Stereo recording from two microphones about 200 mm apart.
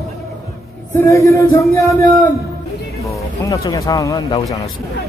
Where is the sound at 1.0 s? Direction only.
15° left (ahead or behind).